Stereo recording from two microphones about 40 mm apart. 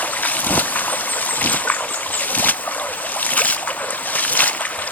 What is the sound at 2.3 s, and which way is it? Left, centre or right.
Boat, left.